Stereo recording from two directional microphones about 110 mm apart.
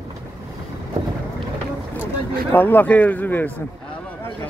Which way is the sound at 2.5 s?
15° left (ahead or behind).